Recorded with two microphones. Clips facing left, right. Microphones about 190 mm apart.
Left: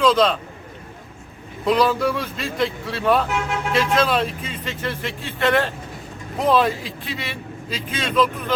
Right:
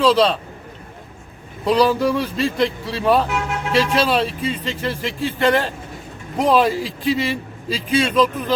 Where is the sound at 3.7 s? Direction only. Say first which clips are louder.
Right 2 dB; 35° right (ahead or behind).